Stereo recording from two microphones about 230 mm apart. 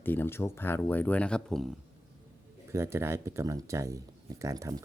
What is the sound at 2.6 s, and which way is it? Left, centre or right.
Speech, centre.